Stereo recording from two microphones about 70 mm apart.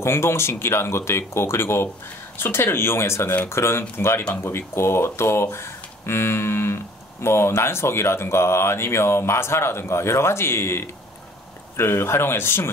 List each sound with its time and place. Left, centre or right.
0.0 s speech: left